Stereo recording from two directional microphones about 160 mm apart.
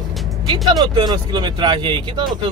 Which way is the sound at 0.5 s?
25° right (ahead or behind).